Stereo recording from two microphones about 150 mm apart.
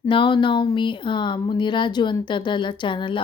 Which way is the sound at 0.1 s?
35° left (ahead or behind).